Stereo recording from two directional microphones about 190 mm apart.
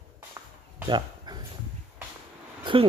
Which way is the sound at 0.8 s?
25° right (ahead or behind).